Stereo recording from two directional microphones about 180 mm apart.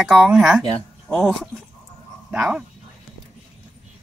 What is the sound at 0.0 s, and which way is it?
Speech, centre (ahead or behind).